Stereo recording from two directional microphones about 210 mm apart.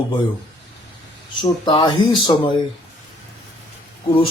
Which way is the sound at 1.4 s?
20° left (ahead or behind).